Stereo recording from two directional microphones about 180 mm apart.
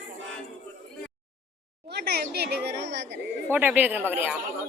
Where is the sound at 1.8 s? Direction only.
65° right (ahead or behind).